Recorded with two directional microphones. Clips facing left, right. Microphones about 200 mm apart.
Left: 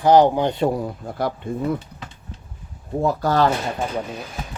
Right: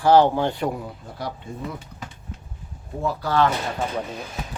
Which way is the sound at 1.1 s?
55° left (ahead or behind).